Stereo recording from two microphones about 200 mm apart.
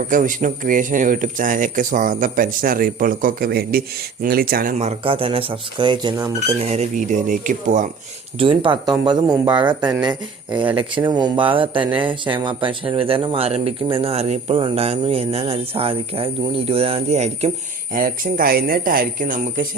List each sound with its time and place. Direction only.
0.1 s speech: 40° right (ahead or behind)
4.8 s speech: 30° right (ahead or behind)
6.7 s speech: 35° right (ahead or behind)
8.4 s speech: 25° right (ahead or behind)
17.9 s speech: 45° right (ahead or behind)